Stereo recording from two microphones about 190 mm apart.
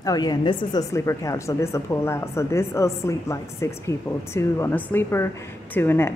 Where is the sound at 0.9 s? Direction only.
15° left (ahead or behind).